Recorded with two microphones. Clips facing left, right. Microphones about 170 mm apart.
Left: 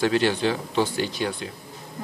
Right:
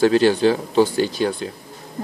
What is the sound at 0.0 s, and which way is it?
Speech, 40° right (ahead or behind).